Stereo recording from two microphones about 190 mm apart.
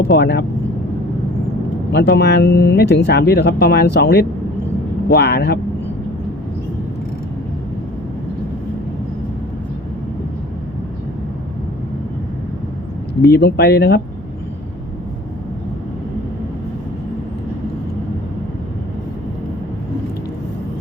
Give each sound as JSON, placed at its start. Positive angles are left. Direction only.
{"t": 0.1, "sound": "speech", "side_deg": 60}
{"t": 1.9, "sound": "speech", "side_deg": 60}
{"t": 13.2, "sound": "speech", "side_deg": 60}